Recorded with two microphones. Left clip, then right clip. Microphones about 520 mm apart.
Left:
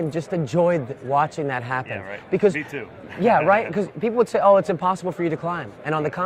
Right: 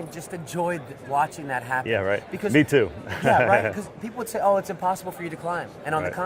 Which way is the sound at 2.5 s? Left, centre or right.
Right.